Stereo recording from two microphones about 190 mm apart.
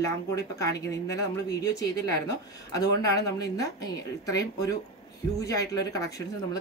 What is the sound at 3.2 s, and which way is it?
Speech, 20° left (ahead or behind).